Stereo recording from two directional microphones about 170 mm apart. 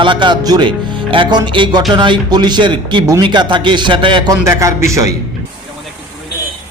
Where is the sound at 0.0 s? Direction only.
30° right (ahead or behind).